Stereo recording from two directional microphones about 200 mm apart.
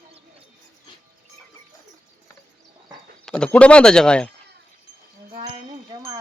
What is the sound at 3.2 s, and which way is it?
Speech, 5° left (ahead or behind).